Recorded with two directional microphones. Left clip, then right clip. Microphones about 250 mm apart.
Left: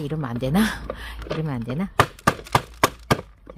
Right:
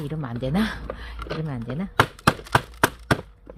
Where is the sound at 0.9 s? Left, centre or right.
Left.